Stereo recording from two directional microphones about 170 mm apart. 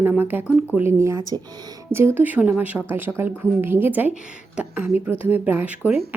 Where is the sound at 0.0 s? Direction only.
10° right (ahead or behind).